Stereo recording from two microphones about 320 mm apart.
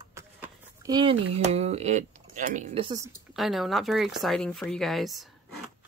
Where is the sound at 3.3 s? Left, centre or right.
Centre.